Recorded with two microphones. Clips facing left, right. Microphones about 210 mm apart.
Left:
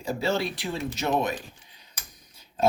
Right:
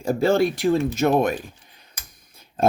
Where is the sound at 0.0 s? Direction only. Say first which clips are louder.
Right 8 dB; 50° right (ahead or behind).